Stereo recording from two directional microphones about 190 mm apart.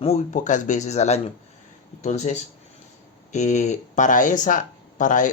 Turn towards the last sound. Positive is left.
turn(degrees=40)  # may be behind; listen again after turning